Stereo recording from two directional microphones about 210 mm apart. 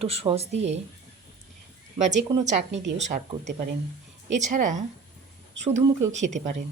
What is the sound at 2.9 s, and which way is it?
Speech, 35° right (ahead or behind).